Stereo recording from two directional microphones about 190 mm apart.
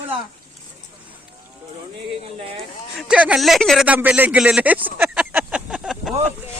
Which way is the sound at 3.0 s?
5° right (ahead or behind).